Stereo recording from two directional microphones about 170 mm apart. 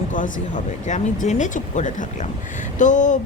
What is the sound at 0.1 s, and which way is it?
A woman's voice, 50° left (ahead or behind).